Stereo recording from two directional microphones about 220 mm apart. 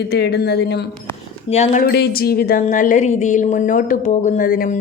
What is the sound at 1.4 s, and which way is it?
Speech, 30° left (ahead or behind).